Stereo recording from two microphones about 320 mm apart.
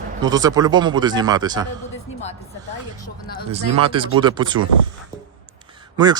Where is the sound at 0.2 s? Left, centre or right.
Centre.